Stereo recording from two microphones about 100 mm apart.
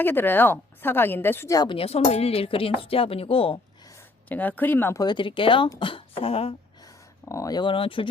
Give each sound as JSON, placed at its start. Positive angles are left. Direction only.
{"t": 0.0, "sound": "speech", "side_deg": 20}
{"t": 1.6, "sound": "speech", "side_deg": 70}
{"t": 4.3, "sound": "speech", "side_deg": 15}
{"t": 4.9, "sound": "speech", "side_deg": 50}
{"t": 6.8, "sound": "a sound", "side_deg": 35}
{"t": 7.5, "sound": "speech", "side_deg": 55}